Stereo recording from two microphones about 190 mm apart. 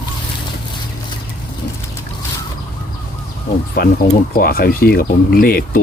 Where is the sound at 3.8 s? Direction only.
55° left (ahead or behind).